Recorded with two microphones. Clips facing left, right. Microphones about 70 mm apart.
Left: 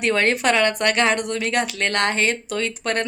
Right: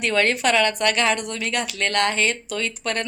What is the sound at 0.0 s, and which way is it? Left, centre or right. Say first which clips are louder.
A woman's voice: left 1 dB; left.